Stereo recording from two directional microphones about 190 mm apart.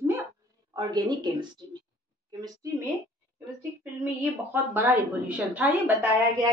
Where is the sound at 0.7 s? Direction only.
20° right (ahead or behind).